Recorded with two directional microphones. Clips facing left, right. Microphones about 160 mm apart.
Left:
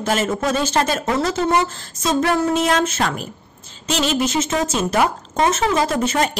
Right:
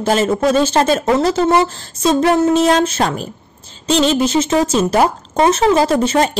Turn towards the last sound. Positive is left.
turn(degrees=-30)  # may be behind; listen again after turning